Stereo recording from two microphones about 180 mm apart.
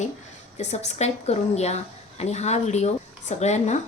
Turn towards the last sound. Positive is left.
turn(degrees=40)  # may be behind; listen again after turning